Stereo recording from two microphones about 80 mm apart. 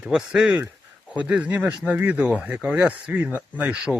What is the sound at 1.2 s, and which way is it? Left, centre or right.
Speech, centre.